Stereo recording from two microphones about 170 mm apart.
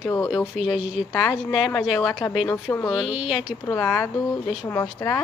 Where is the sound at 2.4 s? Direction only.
10° left (ahead or behind).